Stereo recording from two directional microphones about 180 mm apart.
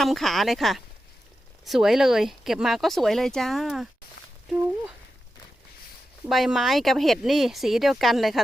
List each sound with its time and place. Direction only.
0.0 s speech: centre (ahead or behind)
4.2 s a sound: 65° left (ahead or behind)
6.2 s speech: centre (ahead or behind)